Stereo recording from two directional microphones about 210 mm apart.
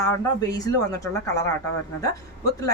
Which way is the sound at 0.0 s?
15° left (ahead or behind).